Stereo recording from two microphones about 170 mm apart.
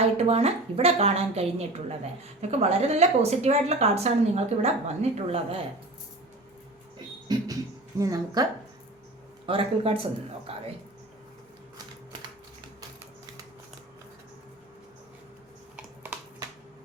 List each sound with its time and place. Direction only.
0.0 s a woman's voice: 35° right (ahead or behind)
7.3 s a sound: 20° right (ahead or behind)
9.5 s a woman's voice: 30° right (ahead or behind)